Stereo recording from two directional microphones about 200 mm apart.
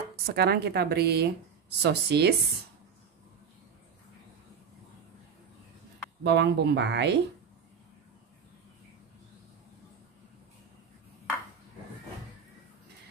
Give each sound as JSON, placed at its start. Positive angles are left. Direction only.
{"t": 0.3, "sound": "speech", "side_deg": -55}
{"t": 6.2, "sound": "speech", "side_deg": -55}